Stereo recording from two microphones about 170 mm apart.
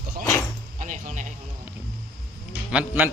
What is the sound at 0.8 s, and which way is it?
Speech, 50° right (ahead or behind).